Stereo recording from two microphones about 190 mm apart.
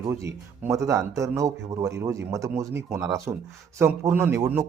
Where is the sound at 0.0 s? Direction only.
15° right (ahead or behind).